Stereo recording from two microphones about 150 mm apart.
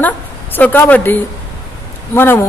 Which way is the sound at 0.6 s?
10° left (ahead or behind).